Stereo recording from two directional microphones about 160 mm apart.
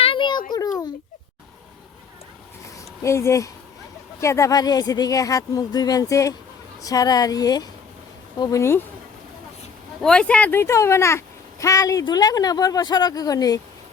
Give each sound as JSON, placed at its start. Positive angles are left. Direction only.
{"t": 0.0, "sound": "a sound", "side_deg": 30}
{"t": 3.0, "sound": "speech", "side_deg": 15}
{"t": 10.0, "sound": "speech", "side_deg": 5}